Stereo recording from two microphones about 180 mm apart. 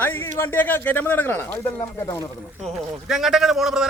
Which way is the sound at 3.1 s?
Centre (ahead or behind).